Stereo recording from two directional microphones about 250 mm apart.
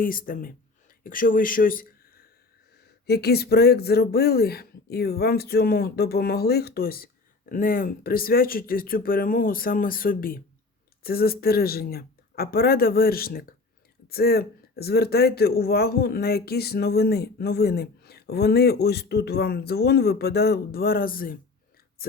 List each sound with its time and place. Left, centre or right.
0.0 s speech: left